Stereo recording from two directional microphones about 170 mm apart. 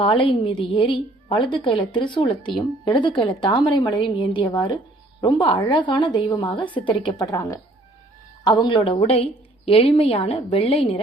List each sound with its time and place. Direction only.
0.0 s a woman's voice: 30° left (ahead or behind)